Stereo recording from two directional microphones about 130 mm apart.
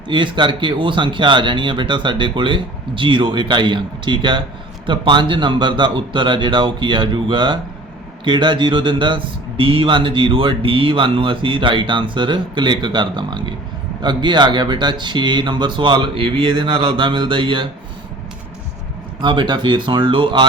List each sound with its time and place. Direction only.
0.1 s speech: 40° right (ahead or behind)
19.2 s speech: 35° right (ahead or behind)